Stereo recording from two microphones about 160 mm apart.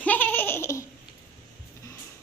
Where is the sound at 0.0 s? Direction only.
10° left (ahead or behind).